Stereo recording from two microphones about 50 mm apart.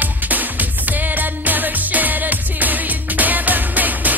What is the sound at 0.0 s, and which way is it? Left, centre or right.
Music, right.